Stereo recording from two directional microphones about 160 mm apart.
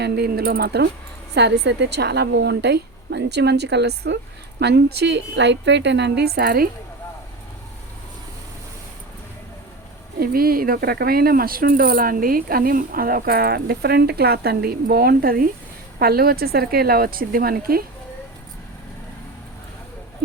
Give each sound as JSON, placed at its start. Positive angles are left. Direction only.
{"t": 0.0, "sound": "a woman's voice", "side_deg": -90}
{"t": 10.2, "sound": "speech", "side_deg": -65}